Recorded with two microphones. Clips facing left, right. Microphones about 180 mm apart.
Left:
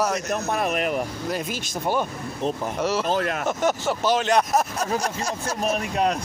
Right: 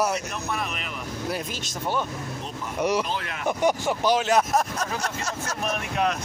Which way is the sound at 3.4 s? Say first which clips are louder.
Even; 15° right (ahead or behind).